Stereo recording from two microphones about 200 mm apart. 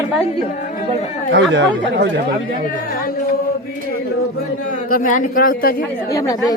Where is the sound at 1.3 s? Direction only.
60° right (ahead or behind).